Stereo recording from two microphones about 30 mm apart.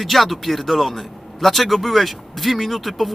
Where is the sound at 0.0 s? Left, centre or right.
Centre.